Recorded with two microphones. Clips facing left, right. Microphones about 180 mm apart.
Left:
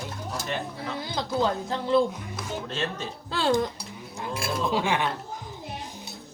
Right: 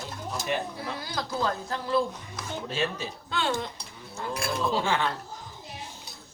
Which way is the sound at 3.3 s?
35° left (ahead or behind).